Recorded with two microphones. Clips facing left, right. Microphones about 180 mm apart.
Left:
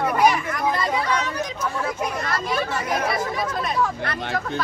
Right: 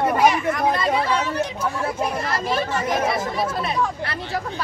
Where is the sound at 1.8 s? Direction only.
30° right (ahead or behind).